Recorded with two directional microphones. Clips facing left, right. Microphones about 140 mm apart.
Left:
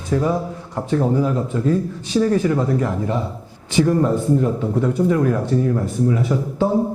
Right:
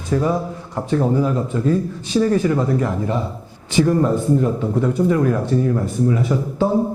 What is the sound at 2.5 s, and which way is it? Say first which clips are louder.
Speech: even; 15° right (ahead or behind).